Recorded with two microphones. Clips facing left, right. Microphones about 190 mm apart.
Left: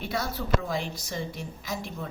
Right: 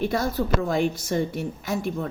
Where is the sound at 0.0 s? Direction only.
45° right (ahead or behind).